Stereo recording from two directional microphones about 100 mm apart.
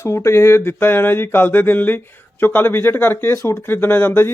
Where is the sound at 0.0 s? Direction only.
25° left (ahead or behind).